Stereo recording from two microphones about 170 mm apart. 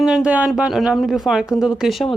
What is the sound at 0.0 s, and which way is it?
Speech, 5° right (ahead or behind).